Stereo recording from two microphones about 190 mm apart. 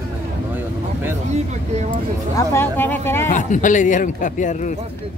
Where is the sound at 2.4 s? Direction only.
10° left (ahead or behind).